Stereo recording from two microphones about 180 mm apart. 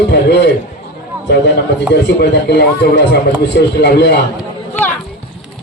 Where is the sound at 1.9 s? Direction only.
70° left (ahead or behind).